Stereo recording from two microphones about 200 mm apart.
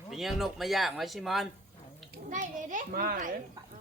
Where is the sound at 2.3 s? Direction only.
40° right (ahead or behind).